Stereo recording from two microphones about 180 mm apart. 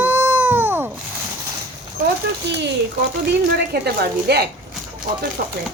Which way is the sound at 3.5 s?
60° right (ahead or behind).